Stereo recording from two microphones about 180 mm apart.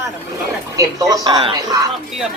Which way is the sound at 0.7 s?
25° right (ahead or behind).